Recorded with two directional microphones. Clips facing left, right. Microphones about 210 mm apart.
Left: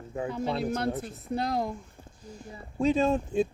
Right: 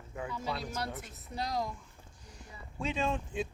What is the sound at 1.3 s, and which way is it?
Speech, 55° left (ahead or behind).